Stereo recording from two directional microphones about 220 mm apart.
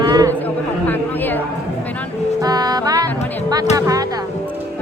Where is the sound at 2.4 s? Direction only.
15° right (ahead or behind).